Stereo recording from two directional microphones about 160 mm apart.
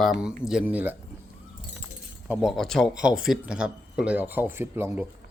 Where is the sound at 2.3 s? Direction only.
Centre (ahead or behind).